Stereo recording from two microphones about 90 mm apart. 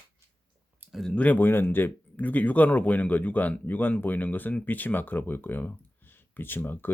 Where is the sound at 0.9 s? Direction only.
5° left (ahead or behind).